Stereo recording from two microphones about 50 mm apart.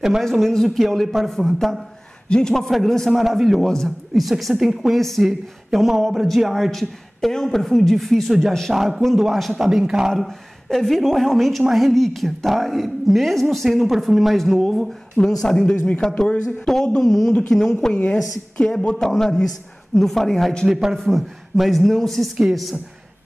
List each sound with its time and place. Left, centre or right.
0.2 s a woman's voice: centre
2.2 s a man's voice: centre
2.5 s a woman's voice: centre
3.6 s speech: centre
4.1 s a woman's voice: centre
10.2 s a woman's voice: centre
15.1 s a woman's voice: centre
20.6 s speech: centre
20.9 s a woman's voice: centre